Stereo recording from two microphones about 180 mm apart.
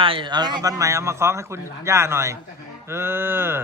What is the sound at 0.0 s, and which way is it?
A man's voice, 30° right (ahead or behind).